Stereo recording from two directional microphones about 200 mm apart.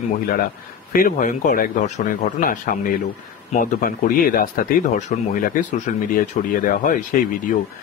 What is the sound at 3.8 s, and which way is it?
A man's voice, 45° left (ahead or behind).